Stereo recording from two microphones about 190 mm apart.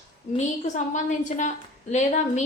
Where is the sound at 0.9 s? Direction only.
40° left (ahead or behind).